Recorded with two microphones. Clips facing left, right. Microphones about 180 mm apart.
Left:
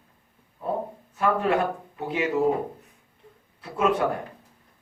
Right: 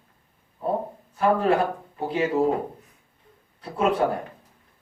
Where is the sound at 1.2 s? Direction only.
35° right (ahead or behind).